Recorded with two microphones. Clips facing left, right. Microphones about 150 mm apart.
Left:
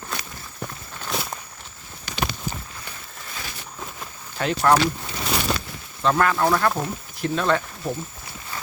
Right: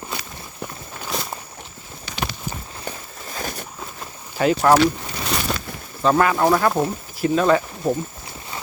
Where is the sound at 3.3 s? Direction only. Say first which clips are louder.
Right 8 dB; 45° right (ahead or behind).